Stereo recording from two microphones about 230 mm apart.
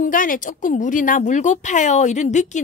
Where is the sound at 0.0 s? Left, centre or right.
Left.